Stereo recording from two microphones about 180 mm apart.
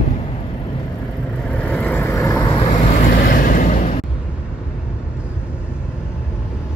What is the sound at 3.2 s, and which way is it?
Vehicle, 50° left (ahead or behind).